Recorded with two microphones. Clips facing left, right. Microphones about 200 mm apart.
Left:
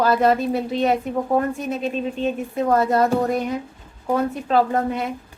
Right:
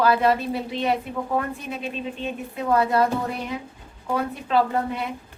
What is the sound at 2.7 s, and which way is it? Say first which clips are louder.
Speech: left 2 dB; 45° left (ahead or behind).